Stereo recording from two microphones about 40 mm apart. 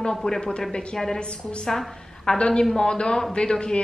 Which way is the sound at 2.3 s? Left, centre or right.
Left.